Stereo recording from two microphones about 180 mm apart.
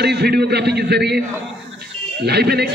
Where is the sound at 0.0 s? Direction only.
65° right (ahead or behind).